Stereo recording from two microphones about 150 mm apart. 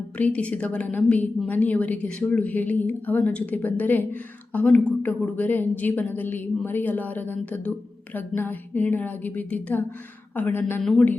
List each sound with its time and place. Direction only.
0.2 s speech: 10° left (ahead or behind)